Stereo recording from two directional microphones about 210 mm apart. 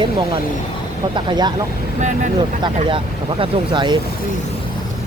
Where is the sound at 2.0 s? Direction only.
35° right (ahead or behind).